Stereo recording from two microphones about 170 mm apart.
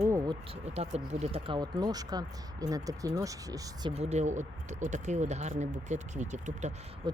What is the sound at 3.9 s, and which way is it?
Speech, 40° right (ahead or behind).